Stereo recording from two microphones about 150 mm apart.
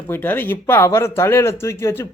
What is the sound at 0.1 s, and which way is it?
A man's voice, 15° left (ahead or behind).